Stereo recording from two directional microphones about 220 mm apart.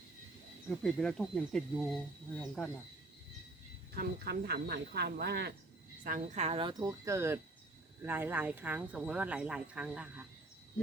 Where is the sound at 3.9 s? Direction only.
45° right (ahead or behind).